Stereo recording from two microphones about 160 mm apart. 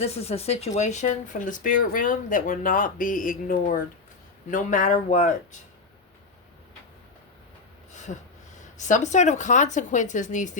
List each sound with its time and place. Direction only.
0.0 s speech: 40° left (ahead or behind)
8.8 s speech: 50° left (ahead or behind)